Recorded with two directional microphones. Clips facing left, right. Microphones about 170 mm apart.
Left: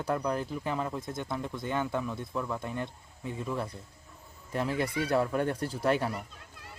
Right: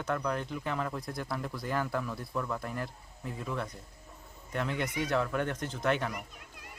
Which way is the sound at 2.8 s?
Centre (ahead or behind).